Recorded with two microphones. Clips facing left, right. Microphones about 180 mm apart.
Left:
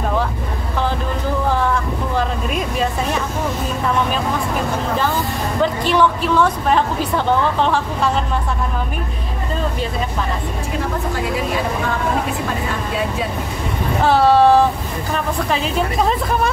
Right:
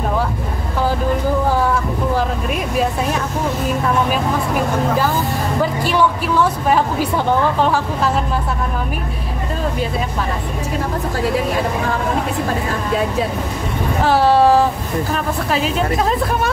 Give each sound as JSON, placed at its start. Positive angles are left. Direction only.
{"t": 2.1, "sound": "speech", "side_deg": -5}
{"t": 5.6, "sound": "a woman's voice", "side_deg": -5}
{"t": 14.0, "sound": "speech", "side_deg": 0}